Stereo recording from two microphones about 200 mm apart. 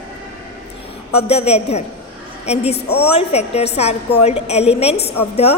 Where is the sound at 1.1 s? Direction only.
30° left (ahead or behind).